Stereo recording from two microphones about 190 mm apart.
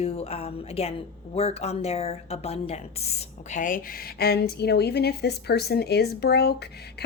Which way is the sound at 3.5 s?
45° left (ahead or behind).